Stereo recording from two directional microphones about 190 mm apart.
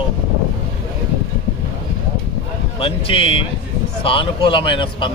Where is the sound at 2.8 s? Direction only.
30° left (ahead or behind).